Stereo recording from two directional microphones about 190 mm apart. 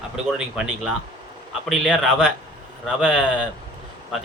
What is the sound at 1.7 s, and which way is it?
Speech, 5° left (ahead or behind).